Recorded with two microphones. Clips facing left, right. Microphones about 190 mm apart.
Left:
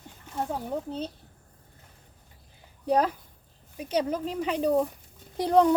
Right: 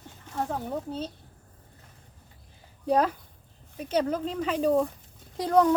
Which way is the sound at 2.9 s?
10° left (ahead or behind).